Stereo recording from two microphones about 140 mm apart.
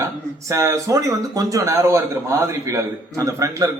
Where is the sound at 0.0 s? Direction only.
20° right (ahead or behind).